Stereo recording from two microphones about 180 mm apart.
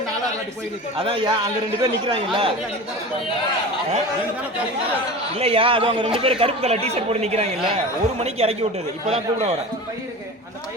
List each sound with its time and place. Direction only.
0.9 s a man's voice: 30° right (ahead or behind)
5.3 s a man's voice: 35° right (ahead or behind)